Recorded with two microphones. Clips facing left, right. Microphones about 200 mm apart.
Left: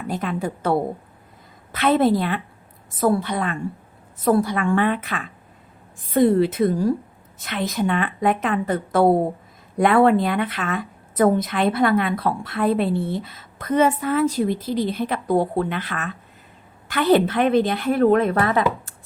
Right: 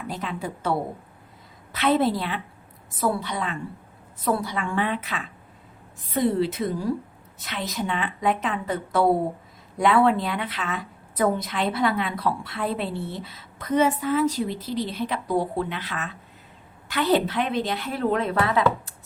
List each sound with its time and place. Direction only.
0.1 s a woman's voice: 50° left (ahead or behind)
1.7 s a woman's voice: 55° left (ahead or behind)